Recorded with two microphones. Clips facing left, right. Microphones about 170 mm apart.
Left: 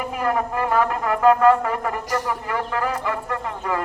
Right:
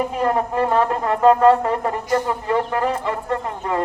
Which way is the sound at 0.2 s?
30° right (ahead or behind).